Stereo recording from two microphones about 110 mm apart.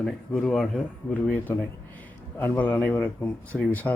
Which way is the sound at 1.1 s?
15° left (ahead or behind).